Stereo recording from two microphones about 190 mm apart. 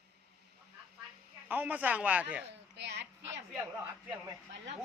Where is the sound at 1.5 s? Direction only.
10° right (ahead or behind).